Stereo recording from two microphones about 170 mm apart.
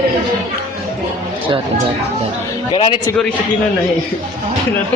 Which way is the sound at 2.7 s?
25° left (ahead or behind).